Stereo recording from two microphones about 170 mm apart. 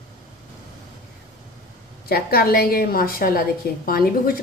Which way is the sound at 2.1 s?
60° left (ahead or behind).